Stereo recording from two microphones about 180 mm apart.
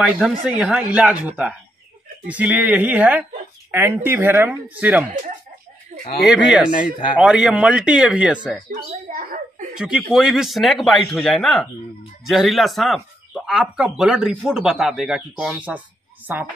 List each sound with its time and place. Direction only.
0.0 s speech: 5° right (ahead or behind)
5.9 s a sound: 40° right (ahead or behind)
6.2 s speech: 5° right (ahead or behind)
6.7 s speech: 50° left (ahead or behind)
7.2 s speech: 5° right (ahead or behind)
8.6 s a sound: 45° right (ahead or behind)
9.8 s speech: 5° right (ahead or behind)